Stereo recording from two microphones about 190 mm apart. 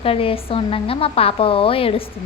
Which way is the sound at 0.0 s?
30° left (ahead or behind).